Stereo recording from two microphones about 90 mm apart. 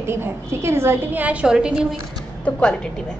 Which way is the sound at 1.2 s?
10° right (ahead or behind).